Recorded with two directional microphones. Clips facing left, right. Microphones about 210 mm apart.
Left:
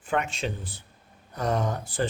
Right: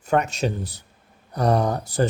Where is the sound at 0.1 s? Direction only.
40° right (ahead or behind).